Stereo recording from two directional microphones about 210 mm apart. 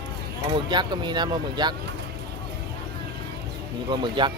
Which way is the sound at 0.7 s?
20° right (ahead or behind).